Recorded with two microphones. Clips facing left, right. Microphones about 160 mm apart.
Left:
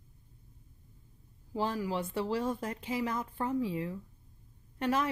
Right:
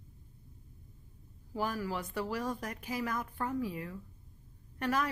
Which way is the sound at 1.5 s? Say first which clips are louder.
Left 3 dB; 25° left (ahead or behind).